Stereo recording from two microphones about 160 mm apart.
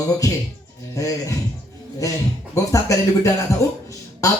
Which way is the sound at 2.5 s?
20° left (ahead or behind).